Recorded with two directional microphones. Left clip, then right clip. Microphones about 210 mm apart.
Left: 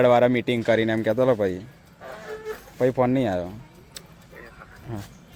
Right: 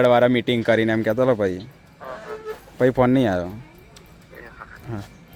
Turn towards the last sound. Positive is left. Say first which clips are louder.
# right 3 dB
turn(degrees=-5)  # may be behind; listen again after turning